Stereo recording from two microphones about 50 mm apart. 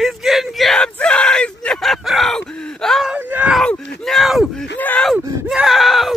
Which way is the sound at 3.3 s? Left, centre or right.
Right.